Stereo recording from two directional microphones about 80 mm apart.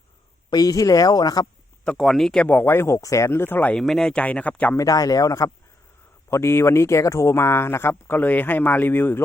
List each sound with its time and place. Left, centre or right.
0.5 s speech: left
2.0 s speech: centre
2.5 s speech: left
3.8 s speech: centre
4.8 s speech: left
6.3 s speech: left